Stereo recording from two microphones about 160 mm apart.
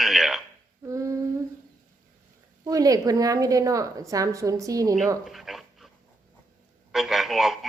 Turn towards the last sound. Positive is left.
turn(degrees=0)  # may be behind; listen again after turning